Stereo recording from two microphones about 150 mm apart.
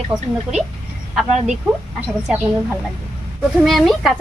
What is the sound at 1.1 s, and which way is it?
Speech, centre (ahead or behind).